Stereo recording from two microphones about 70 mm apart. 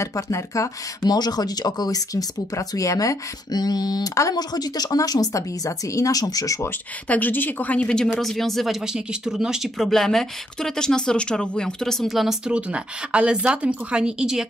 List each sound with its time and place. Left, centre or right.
0.0 s speech: left
1.0 s speech: left
3.5 s speech: left
4.1 s speech: left
4.4 s speech: left
7.1 s speech: left; by 8.7 s centre
8.8 s speech: centre
9.8 s speech: centre
12.4 s speech: centre